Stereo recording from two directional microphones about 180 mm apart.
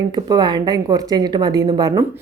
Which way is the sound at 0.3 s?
25° right (ahead or behind).